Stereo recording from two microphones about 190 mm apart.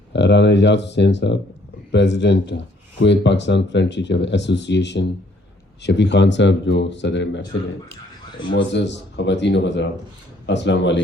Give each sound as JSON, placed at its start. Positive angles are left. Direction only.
{"t": 0.1, "sound": "speech", "side_deg": 65}
{"t": 8.5, "sound": "speech", "side_deg": 70}